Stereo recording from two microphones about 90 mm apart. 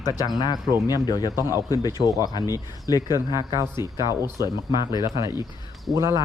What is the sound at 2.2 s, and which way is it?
Speech, 50° left (ahead or behind).